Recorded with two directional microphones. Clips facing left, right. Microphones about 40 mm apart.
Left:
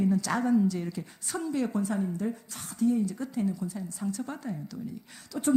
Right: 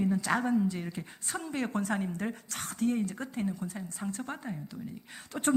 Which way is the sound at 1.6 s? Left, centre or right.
Right.